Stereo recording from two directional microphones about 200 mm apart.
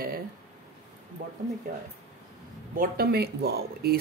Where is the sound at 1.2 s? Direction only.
50° right (ahead or behind).